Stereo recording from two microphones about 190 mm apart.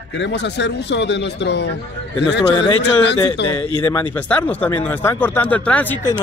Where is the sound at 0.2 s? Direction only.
65° left (ahead or behind).